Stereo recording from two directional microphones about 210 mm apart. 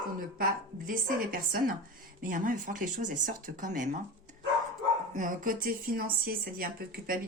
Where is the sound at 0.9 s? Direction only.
40° right (ahead or behind).